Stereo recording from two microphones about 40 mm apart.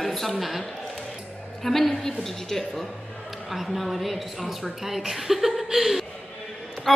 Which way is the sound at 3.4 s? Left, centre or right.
Centre.